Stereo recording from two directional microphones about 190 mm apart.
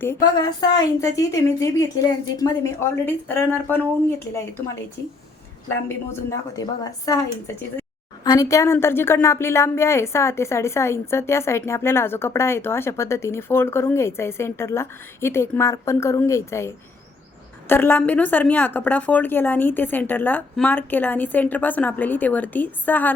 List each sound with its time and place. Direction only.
0.9 s a woman's voice: 15° left (ahead or behind)